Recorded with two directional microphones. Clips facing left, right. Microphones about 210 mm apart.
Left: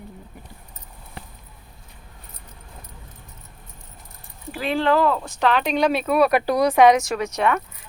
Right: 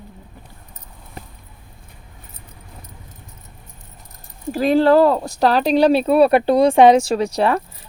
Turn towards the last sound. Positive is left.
turn(degrees=-35)  # may be behind; listen again after turning